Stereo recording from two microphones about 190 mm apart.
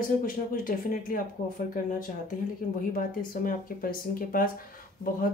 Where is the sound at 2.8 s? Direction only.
45° left (ahead or behind).